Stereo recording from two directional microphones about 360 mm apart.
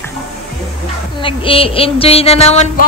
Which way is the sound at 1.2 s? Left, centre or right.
Centre.